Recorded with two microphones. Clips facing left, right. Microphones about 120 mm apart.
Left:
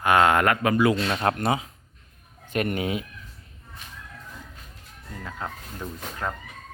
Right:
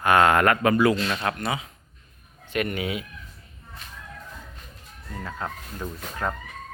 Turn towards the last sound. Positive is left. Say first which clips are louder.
# right 2 dB
turn(degrees=-5)  # may be behind; listen again after turning